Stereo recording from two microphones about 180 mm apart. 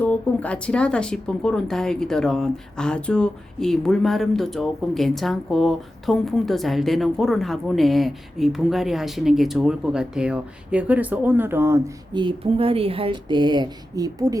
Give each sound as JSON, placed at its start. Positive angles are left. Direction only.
{"t": 0.0, "sound": "speech", "side_deg": 10}
{"t": 12.1, "sound": "speech", "side_deg": -30}